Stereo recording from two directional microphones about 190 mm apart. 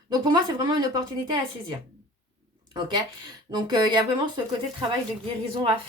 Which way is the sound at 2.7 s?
20° right (ahead or behind).